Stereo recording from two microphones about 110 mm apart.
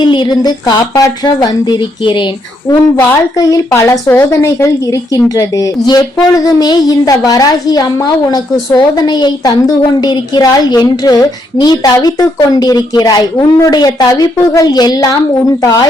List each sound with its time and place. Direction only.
0.0 s a woman's voice: 45° left (ahead or behind)
2.9 s a woman's voice: 20° left (ahead or behind)
3.3 s a woman's voice: 35° left (ahead or behind)